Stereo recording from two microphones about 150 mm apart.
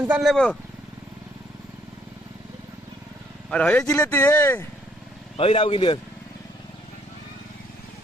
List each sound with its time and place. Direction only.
0.0 s speech: 5° right (ahead or behind)
3.5 s speech: 10° left (ahead or behind)
5.4 s speech: 40° left (ahead or behind)